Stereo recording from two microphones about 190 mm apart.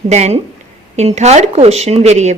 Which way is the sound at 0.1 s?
35° right (ahead or behind).